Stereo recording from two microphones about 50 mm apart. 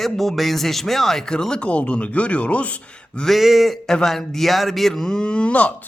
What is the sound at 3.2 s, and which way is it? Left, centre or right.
Speech, centre.